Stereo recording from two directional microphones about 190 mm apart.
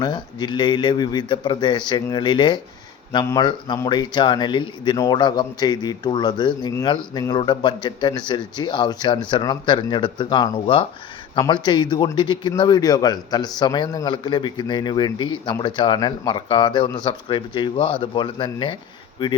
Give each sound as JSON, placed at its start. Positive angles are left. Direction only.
{"t": 0.0, "sound": "a man's voice", "side_deg": 20}